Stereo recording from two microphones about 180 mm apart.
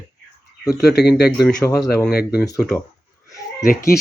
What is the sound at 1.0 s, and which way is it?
Speech, 65° left (ahead or behind).